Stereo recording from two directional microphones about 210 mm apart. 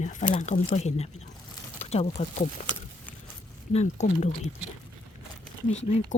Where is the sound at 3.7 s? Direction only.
30° left (ahead or behind).